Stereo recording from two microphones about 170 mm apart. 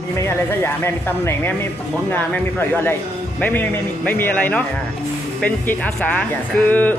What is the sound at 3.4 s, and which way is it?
A man's voice, 10° left (ahead or behind).